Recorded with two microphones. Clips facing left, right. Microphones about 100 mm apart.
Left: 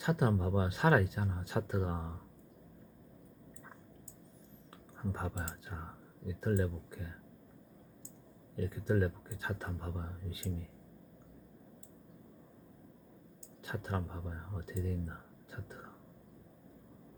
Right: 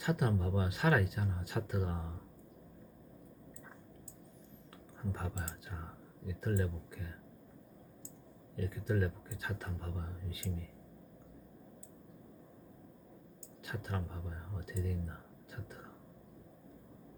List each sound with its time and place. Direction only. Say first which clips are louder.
0.0 s speech: left 2 dB; 25° left (ahead or behind)
5.1 s speech: left 2 dB; 30° left (ahead or behind)
8.5 s speech: left 3 dB; 30° left (ahead or behind)
13.6 s speech: left 3 dB; 30° left (ahead or behind)
15.4 s whispering: left 1 dB; 30° left (ahead or behind)